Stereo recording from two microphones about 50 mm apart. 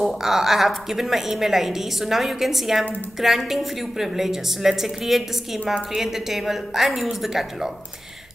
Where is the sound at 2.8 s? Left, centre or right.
Left.